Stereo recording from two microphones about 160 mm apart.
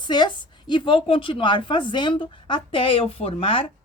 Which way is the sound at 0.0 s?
25° left (ahead or behind).